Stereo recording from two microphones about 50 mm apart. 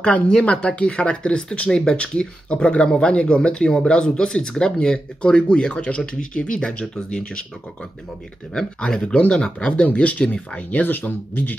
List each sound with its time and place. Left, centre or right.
0.0 s speech: left
8.5 s speech: centre; by 11.5 s left